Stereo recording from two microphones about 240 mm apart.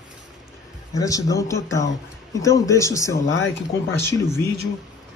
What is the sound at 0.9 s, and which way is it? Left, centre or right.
Speech, centre.